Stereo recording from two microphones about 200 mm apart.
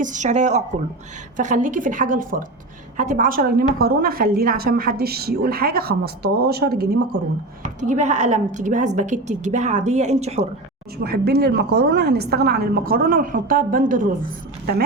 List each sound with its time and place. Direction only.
0.0 s a woman's voice: 35° right (ahead or behind)
7.6 s a woman's voice: 35° right (ahead or behind)
10.9 s a woman's voice: 50° right (ahead or behind)